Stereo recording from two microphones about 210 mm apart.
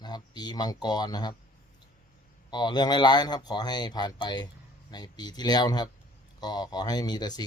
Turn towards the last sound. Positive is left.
turn(degrees=20)  # may be behind; listen again after turning